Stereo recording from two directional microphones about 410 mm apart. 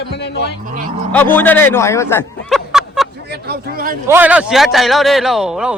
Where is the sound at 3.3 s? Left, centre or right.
Right.